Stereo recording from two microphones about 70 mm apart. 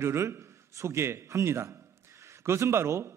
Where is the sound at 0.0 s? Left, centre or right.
Right.